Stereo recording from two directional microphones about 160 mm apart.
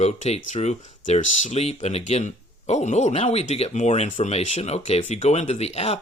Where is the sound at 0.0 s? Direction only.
45° left (ahead or behind).